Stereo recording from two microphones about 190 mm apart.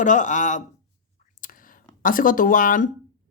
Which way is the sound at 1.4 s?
45° left (ahead or behind).